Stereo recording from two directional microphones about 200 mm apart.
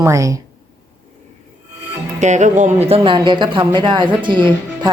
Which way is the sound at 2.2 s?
35° right (ahead or behind).